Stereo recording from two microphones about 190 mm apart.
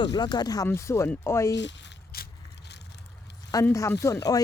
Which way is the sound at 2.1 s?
55° left (ahead or behind).